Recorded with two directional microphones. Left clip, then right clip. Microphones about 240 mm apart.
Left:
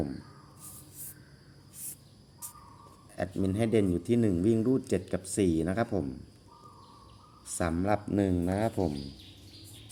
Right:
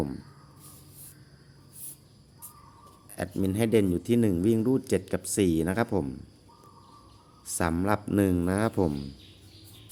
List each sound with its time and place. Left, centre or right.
3.2 s speech: centre
7.6 s speech: centre